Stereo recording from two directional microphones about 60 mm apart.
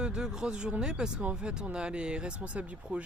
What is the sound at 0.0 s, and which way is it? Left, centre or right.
Speech, centre.